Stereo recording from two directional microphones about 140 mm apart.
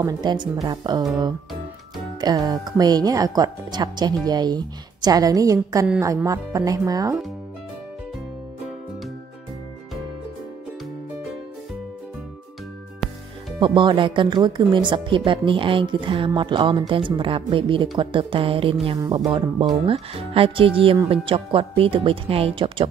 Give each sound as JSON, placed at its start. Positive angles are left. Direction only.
{"t": 0.0, "sound": "speech", "side_deg": -30}
{"t": 2.1, "sound": "speech", "side_deg": -30}
{"t": 13.6, "sound": "speech", "side_deg": -35}
{"t": 18.9, "sound": "speech", "side_deg": -30}